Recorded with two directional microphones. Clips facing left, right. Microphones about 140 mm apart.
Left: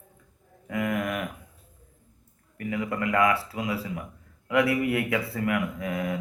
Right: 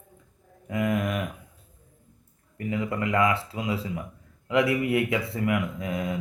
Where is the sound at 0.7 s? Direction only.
20° right (ahead or behind).